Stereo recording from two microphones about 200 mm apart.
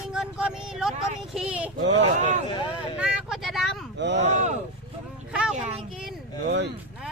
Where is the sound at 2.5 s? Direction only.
20° left (ahead or behind).